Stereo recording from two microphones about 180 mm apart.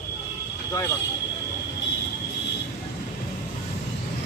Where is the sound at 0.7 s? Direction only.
20° left (ahead or behind).